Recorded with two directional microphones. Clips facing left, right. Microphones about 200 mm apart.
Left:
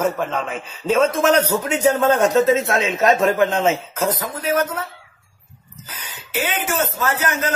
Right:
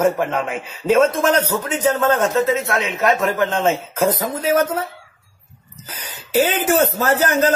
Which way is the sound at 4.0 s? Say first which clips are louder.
Right 4 dB; 20° right (ahead or behind).